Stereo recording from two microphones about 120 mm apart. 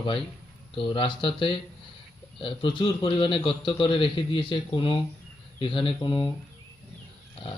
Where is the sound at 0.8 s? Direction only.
45° left (ahead or behind).